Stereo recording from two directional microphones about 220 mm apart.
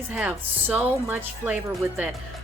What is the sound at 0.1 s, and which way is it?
Speech, 5° right (ahead or behind).